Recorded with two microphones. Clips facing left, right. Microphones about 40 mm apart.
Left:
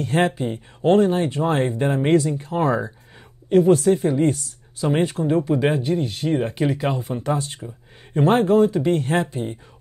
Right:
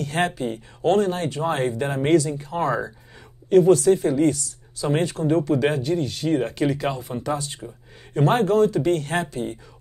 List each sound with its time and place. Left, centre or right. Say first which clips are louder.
0.0 s speech: left 3 dB; left
3.7 s speech: even; left
6.3 s speech: even; centre
7.0 s speech: left 3 dB; left
8.2 s speech: left 2 dB; left